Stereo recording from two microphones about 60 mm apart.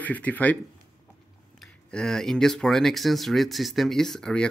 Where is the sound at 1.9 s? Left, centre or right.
Centre.